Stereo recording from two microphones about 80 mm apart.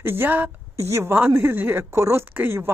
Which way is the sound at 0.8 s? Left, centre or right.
Right.